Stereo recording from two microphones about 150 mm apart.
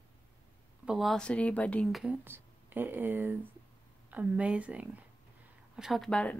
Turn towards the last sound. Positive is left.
turn(degrees=5)  # may be behind; listen again after turning